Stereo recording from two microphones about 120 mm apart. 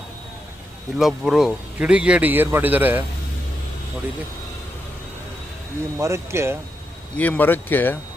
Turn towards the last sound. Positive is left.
turn(degrees=15)  # may be behind; listen again after turning